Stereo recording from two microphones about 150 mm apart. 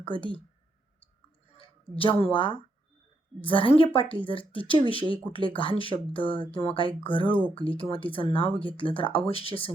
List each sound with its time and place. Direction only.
0.0 s speech: 35° left (ahead or behind)
1.5 s a sound: 35° left (ahead or behind)
2.2 s speech: 35° left (ahead or behind)